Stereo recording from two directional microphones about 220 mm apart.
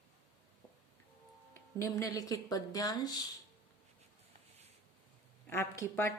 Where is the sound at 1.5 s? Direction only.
15° left (ahead or behind).